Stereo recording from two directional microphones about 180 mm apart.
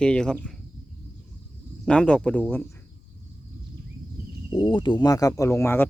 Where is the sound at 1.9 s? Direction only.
5° left (ahead or behind).